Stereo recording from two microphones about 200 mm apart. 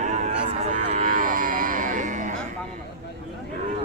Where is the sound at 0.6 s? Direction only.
35° right (ahead or behind).